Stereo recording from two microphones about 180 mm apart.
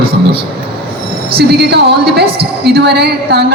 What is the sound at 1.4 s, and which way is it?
A woman's voice, 65° right (ahead or behind).